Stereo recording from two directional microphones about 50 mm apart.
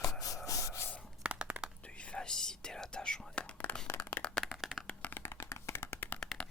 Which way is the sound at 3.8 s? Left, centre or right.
Left.